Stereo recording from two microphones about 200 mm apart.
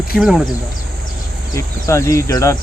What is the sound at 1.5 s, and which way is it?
Speech, 15° left (ahead or behind).